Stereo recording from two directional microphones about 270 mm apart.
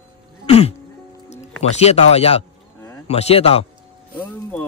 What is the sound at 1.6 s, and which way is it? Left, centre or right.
A man's voice, left.